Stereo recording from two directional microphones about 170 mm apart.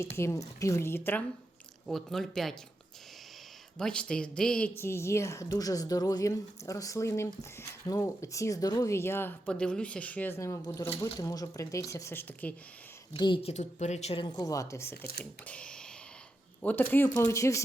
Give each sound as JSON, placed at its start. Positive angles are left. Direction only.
{"t": 0.0, "sound": "speech", "side_deg": 15}
{"t": 1.9, "sound": "speech", "side_deg": 0}
{"t": 3.8, "sound": "a woman's voice", "side_deg": 5}
{"t": 13.1, "sound": "a woman's voice", "side_deg": 30}